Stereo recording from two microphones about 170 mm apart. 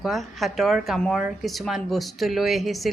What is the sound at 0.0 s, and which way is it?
Speech, centre (ahead or behind).